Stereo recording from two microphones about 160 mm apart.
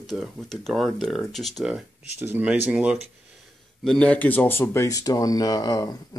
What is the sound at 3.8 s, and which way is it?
Speech, 5° left (ahead or behind).